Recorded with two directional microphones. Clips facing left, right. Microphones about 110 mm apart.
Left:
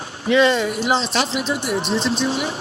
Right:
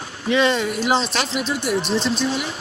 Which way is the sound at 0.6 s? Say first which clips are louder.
Even; 30° left (ahead or behind).